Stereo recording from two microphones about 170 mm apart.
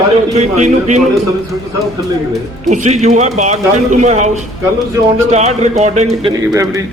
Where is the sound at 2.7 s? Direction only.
45° right (ahead or behind).